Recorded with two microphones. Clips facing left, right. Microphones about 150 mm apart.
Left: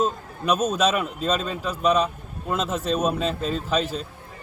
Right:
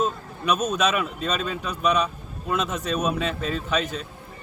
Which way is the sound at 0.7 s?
30° left (ahead or behind).